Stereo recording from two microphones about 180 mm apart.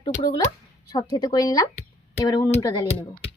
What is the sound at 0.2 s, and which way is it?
Speech, 20° left (ahead or behind).